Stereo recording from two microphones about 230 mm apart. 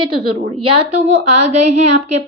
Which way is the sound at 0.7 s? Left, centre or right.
Right.